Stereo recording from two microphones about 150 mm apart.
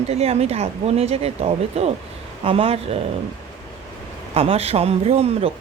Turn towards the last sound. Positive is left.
turn(degrees=-45)  # may be behind; listen again after turning